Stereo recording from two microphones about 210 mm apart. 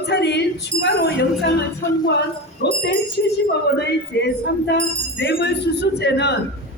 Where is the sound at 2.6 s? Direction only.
55° left (ahead or behind).